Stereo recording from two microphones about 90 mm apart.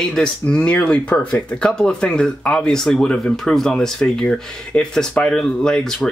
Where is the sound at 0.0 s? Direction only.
10° left (ahead or behind).